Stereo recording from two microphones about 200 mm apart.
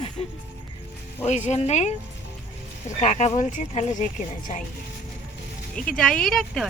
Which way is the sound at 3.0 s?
35° left (ahead or behind).